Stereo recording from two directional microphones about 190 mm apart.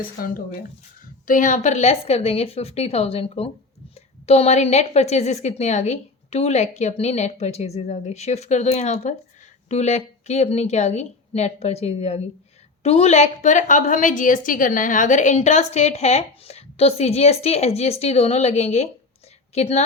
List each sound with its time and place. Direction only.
0.2 s a woman's voice: 50° left (ahead or behind)